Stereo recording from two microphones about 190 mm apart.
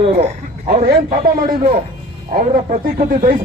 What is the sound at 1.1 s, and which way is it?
Speech, 50° right (ahead or behind).